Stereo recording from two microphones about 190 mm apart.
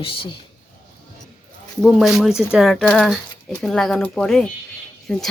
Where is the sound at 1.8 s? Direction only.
5° right (ahead or behind).